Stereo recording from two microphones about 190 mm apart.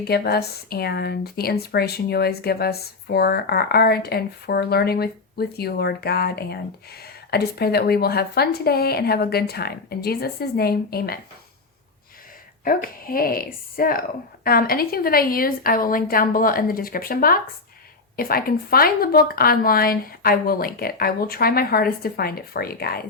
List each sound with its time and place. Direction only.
0.0 s speech: 55° left (ahead or behind)
12.6 s speech: 50° left (ahead or behind)